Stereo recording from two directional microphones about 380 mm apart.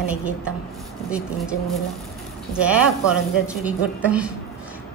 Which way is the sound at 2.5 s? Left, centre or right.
Centre.